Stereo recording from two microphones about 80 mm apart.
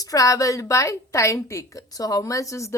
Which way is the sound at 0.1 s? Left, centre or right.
Left.